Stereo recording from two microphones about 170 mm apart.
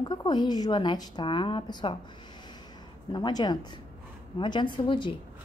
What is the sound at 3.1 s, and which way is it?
A woman's voice, 25° left (ahead or behind).